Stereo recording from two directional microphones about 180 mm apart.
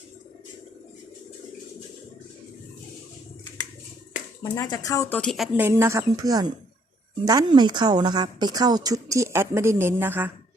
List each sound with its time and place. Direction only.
4.4 s speech: 20° left (ahead or behind)
5.5 s a woman's voice: 15° right (ahead or behind)